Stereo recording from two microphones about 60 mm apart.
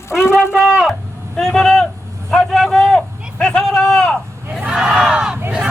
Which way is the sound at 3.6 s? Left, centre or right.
Centre.